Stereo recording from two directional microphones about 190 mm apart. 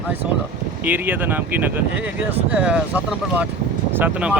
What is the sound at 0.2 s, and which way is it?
Speech, 5° right (ahead or behind).